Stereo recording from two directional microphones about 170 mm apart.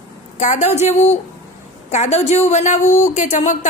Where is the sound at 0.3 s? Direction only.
45° left (ahead or behind).